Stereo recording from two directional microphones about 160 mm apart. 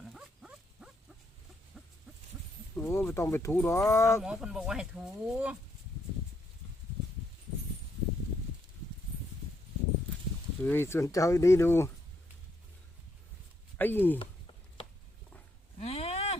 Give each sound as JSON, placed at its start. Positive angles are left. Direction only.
{"t": 0.0, "sound": "dog", "side_deg": -5}
{"t": 1.7, "sound": "owl", "side_deg": 0}
{"t": 2.7, "sound": "speech", "side_deg": 15}
{"t": 4.2, "sound": "speech", "side_deg": -5}
{"t": 10.6, "sound": "speech", "side_deg": 15}
{"t": 13.7, "sound": "speech", "side_deg": 10}
{"t": 15.8, "sound": "a sound", "side_deg": 40}